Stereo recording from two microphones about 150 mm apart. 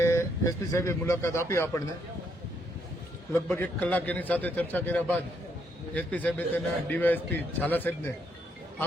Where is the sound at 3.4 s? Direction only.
10° left (ahead or behind).